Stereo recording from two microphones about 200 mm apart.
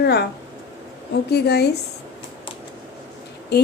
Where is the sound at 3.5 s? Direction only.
55° left (ahead or behind).